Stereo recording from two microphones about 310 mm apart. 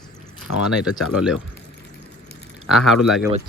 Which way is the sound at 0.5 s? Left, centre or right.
Left.